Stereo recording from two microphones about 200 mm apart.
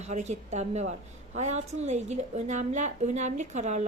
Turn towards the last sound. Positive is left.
turn(degrees=-35)  # may be behind; listen again after turning